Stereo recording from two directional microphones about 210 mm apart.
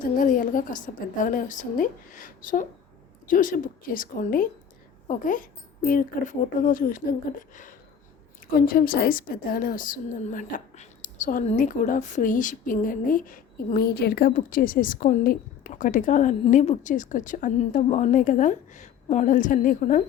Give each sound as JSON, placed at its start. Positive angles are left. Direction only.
{"t": 0.2, "sound": "a woman's voice", "side_deg": 40}